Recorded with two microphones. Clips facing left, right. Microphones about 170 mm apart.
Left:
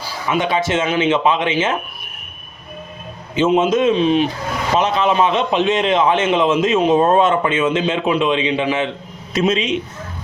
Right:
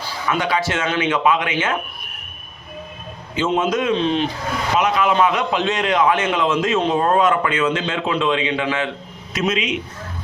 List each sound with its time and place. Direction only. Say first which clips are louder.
0.3 s a man's voice: left 3 dB; 20° left (ahead or behind)
3.3 s a man's voice: left 5 dB; 20° left (ahead or behind)
3.9 s speech: left 4 dB; 10° left (ahead or behind)
4.8 s a man's voice: left 1 dB; 25° left (ahead or behind)